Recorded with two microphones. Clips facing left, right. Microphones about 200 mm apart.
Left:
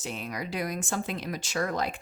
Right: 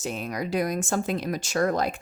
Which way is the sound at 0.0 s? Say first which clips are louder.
Right 5 dB; 45° right (ahead or behind).